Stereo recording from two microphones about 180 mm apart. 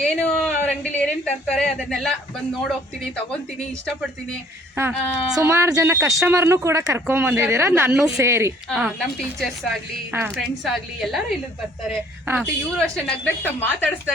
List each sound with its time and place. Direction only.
0.0 s speech: 5° left (ahead or behind)
4.8 s speech: 15° right (ahead or behind)
8.7 s a woman's voice: centre (ahead or behind)
10.1 s a woman's voice: 10° right (ahead or behind)
12.3 s speech: 15° right (ahead or behind)
12.7 s a woman's voice: 5° left (ahead or behind)